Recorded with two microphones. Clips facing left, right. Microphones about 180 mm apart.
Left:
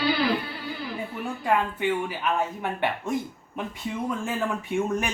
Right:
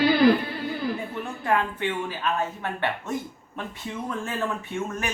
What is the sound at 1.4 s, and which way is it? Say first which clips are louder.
Speech: left 1 dB; 10° left (ahead or behind).